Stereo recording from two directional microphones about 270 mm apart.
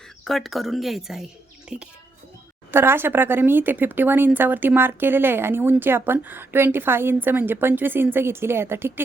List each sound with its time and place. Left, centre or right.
0.3 s a woman's voice: centre